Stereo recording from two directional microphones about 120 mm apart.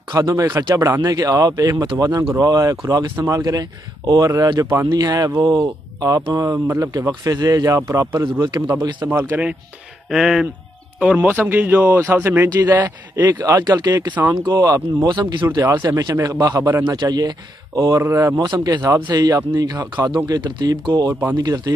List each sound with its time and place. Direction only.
0.1 s speech: 30° right (ahead or behind)
4.6 s speech: 20° right (ahead or behind)
10.0 s a man's voice: 5° right (ahead or behind)
13.4 s speech: 30° right (ahead or behind)
21.1 s a man's voice: 15° right (ahead or behind)
21.4 s speech: 30° right (ahead or behind)